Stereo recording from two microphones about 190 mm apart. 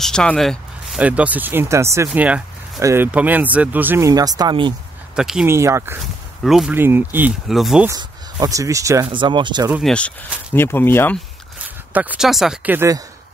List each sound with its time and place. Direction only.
0.0 s speech: 5° left (ahead or behind); by 4.7 s 25° right (ahead or behind)
5.1 s speech: 5° right (ahead or behind)
5.5 s speech: 15° right (ahead or behind)
6.4 s speech: centre (ahead or behind)
7.9 s speech: 20° right (ahead or behind)
9.7 s speech: 5° right (ahead or behind)
10.5 s speech: 10° left (ahead or behind)
11.9 s speech: 10° right (ahead or behind)